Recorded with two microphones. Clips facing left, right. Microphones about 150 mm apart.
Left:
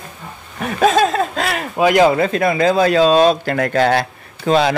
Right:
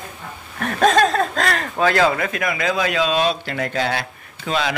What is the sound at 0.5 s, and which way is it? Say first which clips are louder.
Speech: left 2 dB; 5° left (ahead or behind).